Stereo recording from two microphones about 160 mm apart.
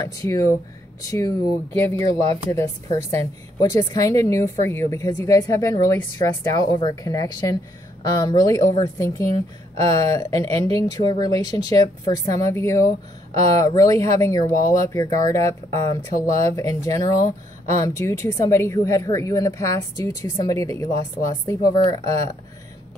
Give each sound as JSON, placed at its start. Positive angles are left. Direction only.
{"t": 0.0, "sound": "speech", "side_deg": 20}